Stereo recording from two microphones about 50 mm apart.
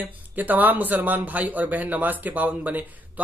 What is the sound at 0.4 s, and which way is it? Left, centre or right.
Speech, right.